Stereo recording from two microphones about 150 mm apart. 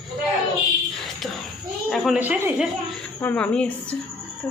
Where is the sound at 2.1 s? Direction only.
10° right (ahead or behind).